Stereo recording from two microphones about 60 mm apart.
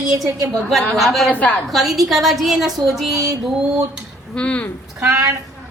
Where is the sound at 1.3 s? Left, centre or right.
Left.